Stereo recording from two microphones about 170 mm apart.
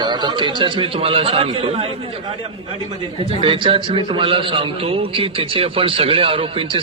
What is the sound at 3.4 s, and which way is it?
A man's voice, 30° right (ahead or behind).